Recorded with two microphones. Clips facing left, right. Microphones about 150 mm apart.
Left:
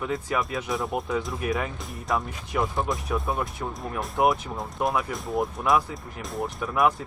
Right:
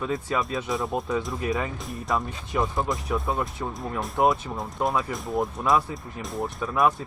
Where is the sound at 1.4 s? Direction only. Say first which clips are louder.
Even; 20° right (ahead or behind).